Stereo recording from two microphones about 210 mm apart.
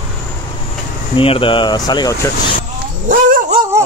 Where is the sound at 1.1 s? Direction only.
25° left (ahead or behind).